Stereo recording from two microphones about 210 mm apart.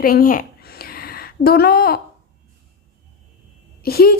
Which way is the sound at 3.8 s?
45° left (ahead or behind).